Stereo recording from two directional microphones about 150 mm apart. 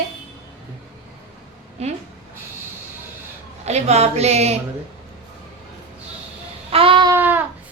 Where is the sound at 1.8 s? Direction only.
45° right (ahead or behind).